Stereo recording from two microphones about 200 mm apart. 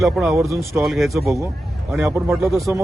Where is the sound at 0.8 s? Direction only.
Centre (ahead or behind).